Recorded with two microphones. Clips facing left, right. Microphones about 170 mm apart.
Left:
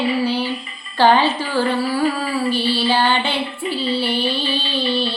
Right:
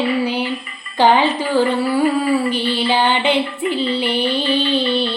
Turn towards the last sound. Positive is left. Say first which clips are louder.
# right 2 dB
turn(degrees=-20)  # may be behind; listen again after turning